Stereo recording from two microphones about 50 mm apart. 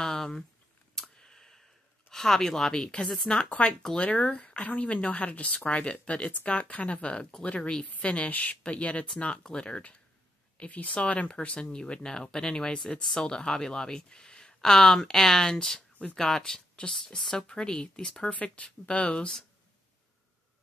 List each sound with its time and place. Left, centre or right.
0.0 s speech: centre
0.9 s a sound: centre
2.0 s speech: centre
2.7 s speech: centre
18.3 s speech: left